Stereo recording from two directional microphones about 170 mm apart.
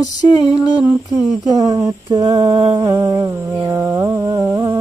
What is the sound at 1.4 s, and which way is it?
Speech, 20° right (ahead or behind).